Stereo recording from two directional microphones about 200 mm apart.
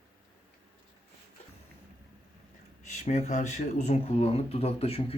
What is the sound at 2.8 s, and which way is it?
Speech, 35° left (ahead or behind).